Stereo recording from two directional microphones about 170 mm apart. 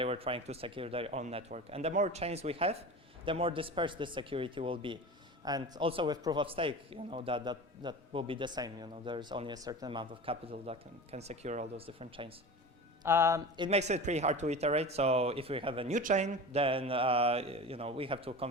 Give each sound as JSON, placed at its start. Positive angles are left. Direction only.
{"t": 0.0, "sound": "a man's voice", "side_deg": -35}
{"t": 13.0, "sound": "mantra", "side_deg": -15}
{"t": 13.6, "sound": "a man's voice", "side_deg": -40}
{"t": 16.0, "sound": "a man's voice", "side_deg": -45}